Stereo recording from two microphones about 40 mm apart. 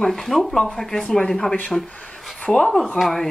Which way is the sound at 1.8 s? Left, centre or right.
Left.